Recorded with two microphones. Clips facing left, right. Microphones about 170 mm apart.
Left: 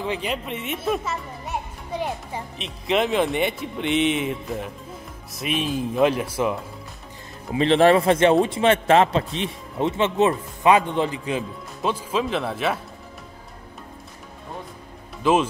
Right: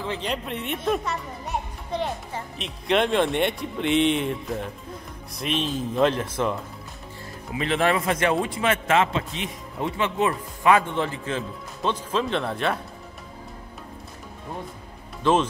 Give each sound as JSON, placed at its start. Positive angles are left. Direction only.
{"t": 0.0, "sound": "speech", "side_deg": 15}
{"t": 0.3, "sound": "a child's voice", "side_deg": 0}
{"t": 7.5, "sound": "a man's voice", "side_deg": 30}